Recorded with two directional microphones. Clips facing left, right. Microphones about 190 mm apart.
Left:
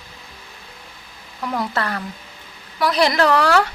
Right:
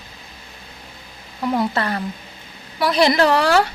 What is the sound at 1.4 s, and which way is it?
Speech, 25° right (ahead or behind).